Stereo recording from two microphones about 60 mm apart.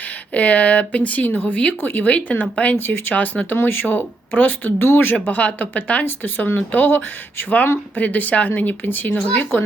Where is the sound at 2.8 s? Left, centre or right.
Left.